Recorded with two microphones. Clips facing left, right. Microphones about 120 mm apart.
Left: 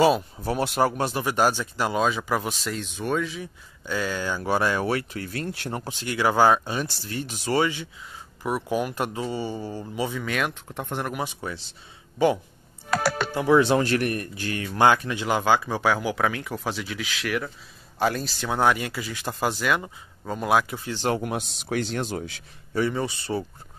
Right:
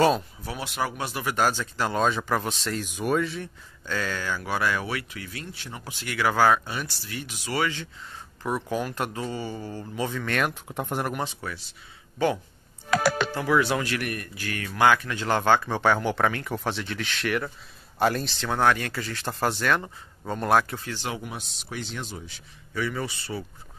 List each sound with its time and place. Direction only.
0.4 s speech: 45° left (ahead or behind)
1.2 s speech: 20° left (ahead or behind); by 3.4 s centre (ahead or behind)
3.8 s speech: 15° left (ahead or behind); by 5.9 s 50° left (ahead or behind)
5.9 s speech: 25° left (ahead or behind)
7.6 s speech: 15° left (ahead or behind); by 11.1 s 5° right (ahead or behind)
11.4 s speech: 20° left (ahead or behind)
13.3 s speech: 20° left (ahead or behind); by 18.4 s centre (ahead or behind)
18.4 s speech: 15° left (ahead or behind)
21.0 s speech: 55° left (ahead or behind)
21.8 s speech: 55° left (ahead or behind)
22.1 s speech: 80° left
22.8 s speech: 25° left (ahead or behind)